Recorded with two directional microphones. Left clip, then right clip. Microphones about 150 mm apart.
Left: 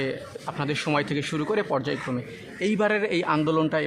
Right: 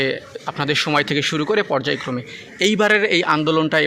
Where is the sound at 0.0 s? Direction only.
25° right (ahead or behind).